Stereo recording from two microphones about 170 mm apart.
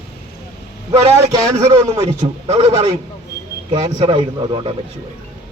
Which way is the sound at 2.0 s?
35° right (ahead or behind).